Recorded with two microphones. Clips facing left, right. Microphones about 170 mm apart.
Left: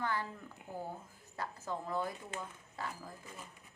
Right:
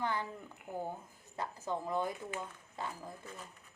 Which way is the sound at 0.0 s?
20° right (ahead or behind).